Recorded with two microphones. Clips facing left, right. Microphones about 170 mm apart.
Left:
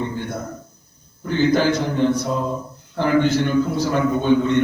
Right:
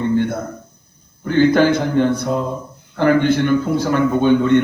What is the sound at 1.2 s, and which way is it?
A man's voice, 55° right (ahead or behind).